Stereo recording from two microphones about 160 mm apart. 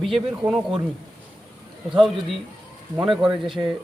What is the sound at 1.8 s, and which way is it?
Speech, centre (ahead or behind).